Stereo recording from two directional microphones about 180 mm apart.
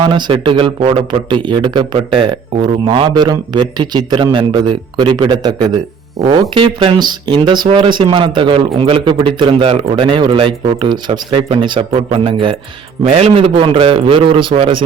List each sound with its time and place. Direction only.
0.0 s a man's voice: 25° right (ahead or behind)